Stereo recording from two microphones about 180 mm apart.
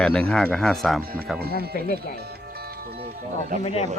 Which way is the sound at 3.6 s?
35° left (ahead or behind).